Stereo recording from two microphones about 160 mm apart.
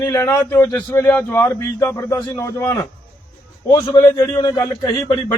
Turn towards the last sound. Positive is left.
turn(degrees=20)  # may be behind; listen again after turning